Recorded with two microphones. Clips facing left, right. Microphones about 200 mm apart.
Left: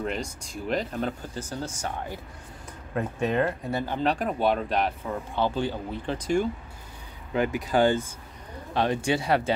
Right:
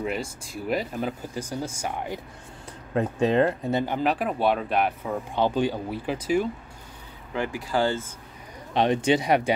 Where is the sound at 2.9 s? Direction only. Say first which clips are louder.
Right 4 dB; 30° right (ahead or behind).